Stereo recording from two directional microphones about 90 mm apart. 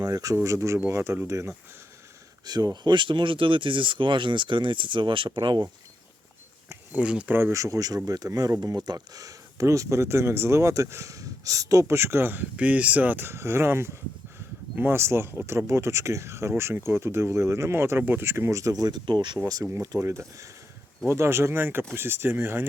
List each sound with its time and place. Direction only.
0.0 s speech: 45° right (ahead or behind)
0.4 s speech: 35° right (ahead or behind)
2.4 s speech: 45° right (ahead or behind); by 5.6 s 60° right (ahead or behind)
6.9 s speech: 15° right (ahead or behind)
7.5 s speech: 35° right (ahead or behind); by 19.4 s 55° right (ahead or behind)
20.0 s speech: 30° right (ahead or behind)